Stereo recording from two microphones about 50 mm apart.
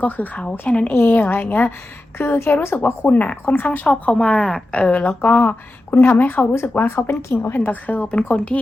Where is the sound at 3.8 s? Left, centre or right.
Left.